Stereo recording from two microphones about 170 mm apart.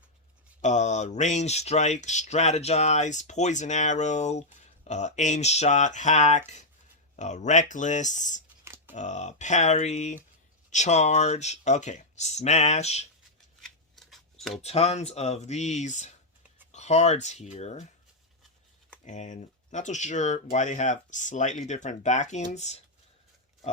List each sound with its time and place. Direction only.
0.6 s speech: 45° left (ahead or behind)
13.6 s scissors: centre (ahead or behind)
14.6 s speech: 40° left (ahead or behind)
19.0 s speech: 45° left (ahead or behind)